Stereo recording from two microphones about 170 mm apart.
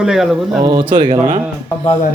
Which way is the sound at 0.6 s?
25° right (ahead or behind).